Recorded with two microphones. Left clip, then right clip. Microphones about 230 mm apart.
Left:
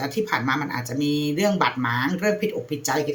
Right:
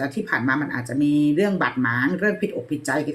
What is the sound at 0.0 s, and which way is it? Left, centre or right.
Speech, left.